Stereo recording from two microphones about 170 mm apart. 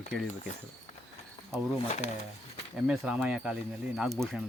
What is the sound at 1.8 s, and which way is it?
Speech, 45° left (ahead or behind).